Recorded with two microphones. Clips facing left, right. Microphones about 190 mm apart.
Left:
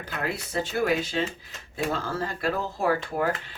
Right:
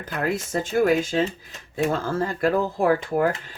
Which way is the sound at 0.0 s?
45° right (ahead or behind).